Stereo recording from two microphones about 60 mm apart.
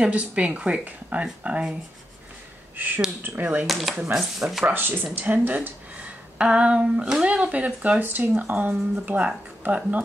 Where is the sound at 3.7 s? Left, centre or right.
Centre.